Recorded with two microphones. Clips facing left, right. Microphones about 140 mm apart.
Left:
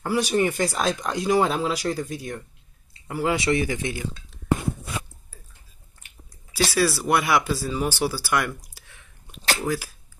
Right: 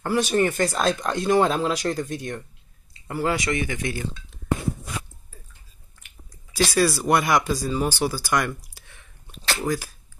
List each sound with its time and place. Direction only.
0.0 s speech: 10° left (ahead or behind)
3.3 s speech: 30° left (ahead or behind)
3.8 s speech: 15° left (ahead or behind)
6.5 s speech: 5° left (ahead or behind)
8.7 s a sound: 5° left (ahead or behind)
9.7 s speech: 15° right (ahead or behind)